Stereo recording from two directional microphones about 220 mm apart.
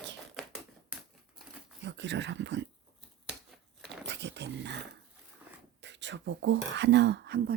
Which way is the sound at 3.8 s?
55° right (ahead or behind).